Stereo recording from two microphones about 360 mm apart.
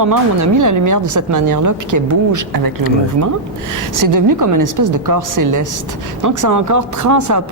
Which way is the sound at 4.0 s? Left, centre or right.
Right.